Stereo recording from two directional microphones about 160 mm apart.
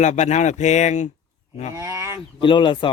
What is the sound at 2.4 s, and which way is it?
Speech, 30° left (ahead or behind).